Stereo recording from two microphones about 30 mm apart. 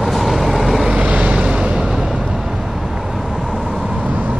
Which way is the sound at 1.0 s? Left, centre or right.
Right.